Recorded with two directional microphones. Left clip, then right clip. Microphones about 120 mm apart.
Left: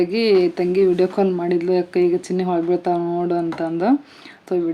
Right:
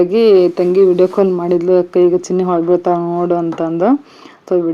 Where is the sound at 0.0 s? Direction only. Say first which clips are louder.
Right 7 dB; 20° right (ahead or behind).